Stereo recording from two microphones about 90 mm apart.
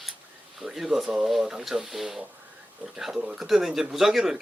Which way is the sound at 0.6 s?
5° right (ahead or behind).